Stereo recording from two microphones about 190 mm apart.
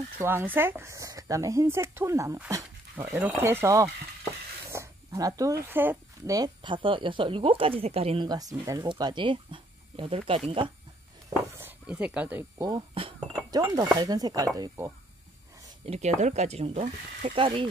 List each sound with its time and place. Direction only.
0.2 s speech: 10° right (ahead or behind); by 8.3 s 30° right (ahead or behind)
8.3 s speech: 20° right (ahead or behind)
11.5 s chink: 10° right (ahead or behind)
13.9 s speech: 20° right (ahead or behind)
15.8 s speech: 35° right (ahead or behind)